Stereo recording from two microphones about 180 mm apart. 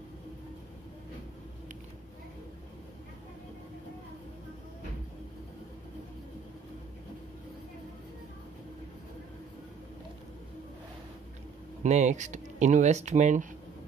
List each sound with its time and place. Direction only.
11.8 s speech: 40° right (ahead or behind)